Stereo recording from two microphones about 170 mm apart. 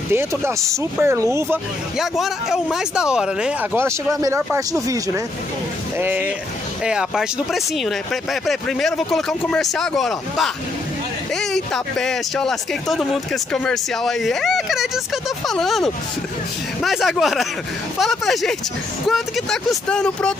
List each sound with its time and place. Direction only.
0.1 s speech: 15° right (ahead or behind)
2.0 s speech: centre (ahead or behind)
3.7 s speech: 15° right (ahead or behind); by 20.3 s 5° left (ahead or behind)